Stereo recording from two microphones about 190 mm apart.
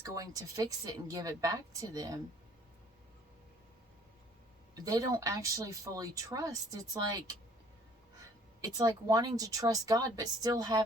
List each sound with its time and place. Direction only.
0.0 s speech: 20° right (ahead or behind)
4.7 s speech: 20° right (ahead or behind)